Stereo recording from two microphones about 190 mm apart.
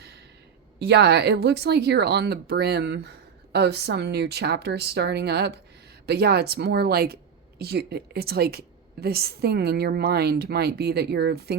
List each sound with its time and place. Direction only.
0.8 s a woman's voice: 60° right (ahead or behind)